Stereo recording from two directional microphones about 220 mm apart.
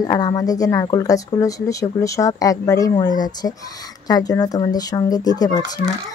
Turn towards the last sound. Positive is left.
turn(degrees=15)  # may be behind; listen again after turning